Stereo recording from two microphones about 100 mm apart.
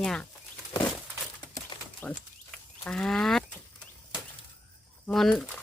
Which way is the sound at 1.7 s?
55° left (ahead or behind).